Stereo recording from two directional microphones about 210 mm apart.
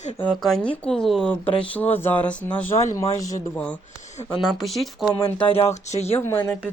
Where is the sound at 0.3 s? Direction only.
5° left (ahead or behind).